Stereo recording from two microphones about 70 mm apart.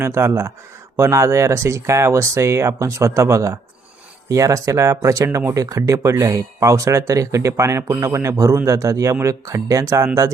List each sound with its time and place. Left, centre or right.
0.0 s speech: right